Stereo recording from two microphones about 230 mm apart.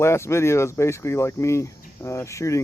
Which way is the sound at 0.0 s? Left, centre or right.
Centre.